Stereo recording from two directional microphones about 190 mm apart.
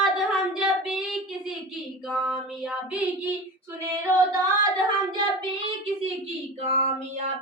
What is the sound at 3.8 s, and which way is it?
Female singing, 20° right (ahead or behind).